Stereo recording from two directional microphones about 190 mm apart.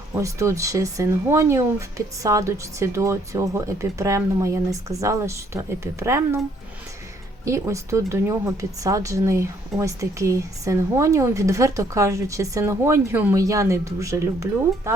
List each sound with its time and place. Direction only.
0.1 s speech: 15° right (ahead or behind)
7.4 s speech: 15° right (ahead or behind)